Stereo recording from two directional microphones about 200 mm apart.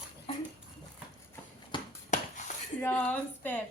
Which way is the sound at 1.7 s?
25° left (ahead or behind).